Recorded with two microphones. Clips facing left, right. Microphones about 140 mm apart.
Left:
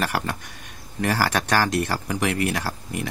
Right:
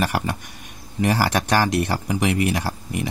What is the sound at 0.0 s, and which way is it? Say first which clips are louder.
Speech: right 2 dB; 15° right (ahead or behind).